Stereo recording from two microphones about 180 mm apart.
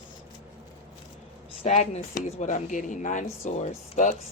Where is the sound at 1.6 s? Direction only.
40° left (ahead or behind).